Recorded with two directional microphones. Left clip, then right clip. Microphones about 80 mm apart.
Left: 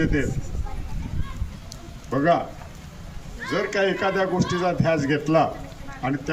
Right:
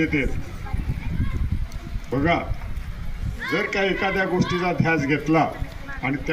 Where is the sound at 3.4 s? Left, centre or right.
Centre.